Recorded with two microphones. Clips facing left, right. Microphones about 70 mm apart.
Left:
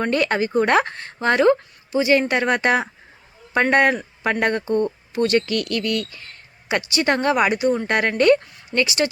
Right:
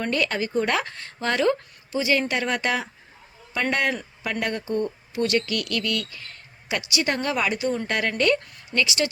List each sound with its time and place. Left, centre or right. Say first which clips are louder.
0.0 s speech: left 5 dB; left